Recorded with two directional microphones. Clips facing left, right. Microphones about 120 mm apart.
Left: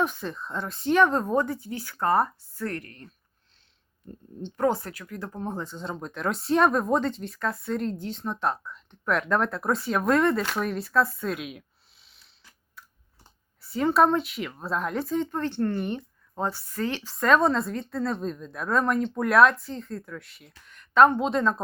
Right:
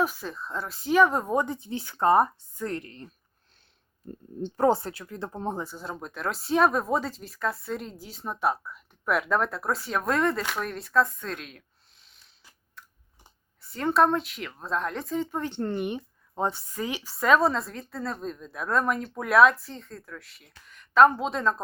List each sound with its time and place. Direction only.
0.0 s speech: 5° right (ahead or behind); by 3.1 s 25° right (ahead or behind)
4.5 s speech: 30° right (ahead or behind)
5.5 s speech: 10° right (ahead or behind)
13.6 s speech: centre (ahead or behind)